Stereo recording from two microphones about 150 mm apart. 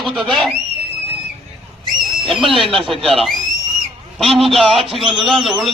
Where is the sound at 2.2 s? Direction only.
Centre (ahead or behind).